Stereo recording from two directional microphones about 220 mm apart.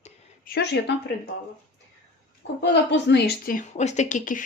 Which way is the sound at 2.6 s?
50° left (ahead or behind).